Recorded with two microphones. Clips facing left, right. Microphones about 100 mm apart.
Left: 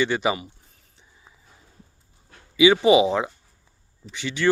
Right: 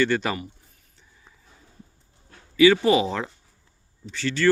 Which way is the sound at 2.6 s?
15° left (ahead or behind).